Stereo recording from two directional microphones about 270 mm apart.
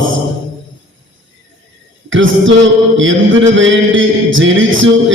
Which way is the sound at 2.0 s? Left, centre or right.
Right.